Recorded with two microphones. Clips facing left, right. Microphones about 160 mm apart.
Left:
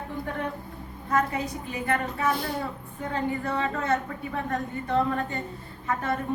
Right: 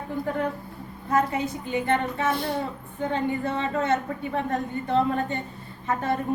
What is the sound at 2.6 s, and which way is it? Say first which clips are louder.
Speech: right 3 dB; 25° right (ahead or behind).